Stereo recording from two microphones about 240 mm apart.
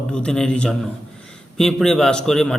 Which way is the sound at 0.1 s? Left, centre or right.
Centre.